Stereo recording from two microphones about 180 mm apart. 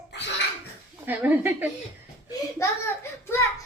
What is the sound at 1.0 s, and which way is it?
Speech, 10° right (ahead or behind).